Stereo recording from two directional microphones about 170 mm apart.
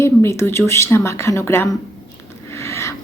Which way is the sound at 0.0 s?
15° left (ahead or behind).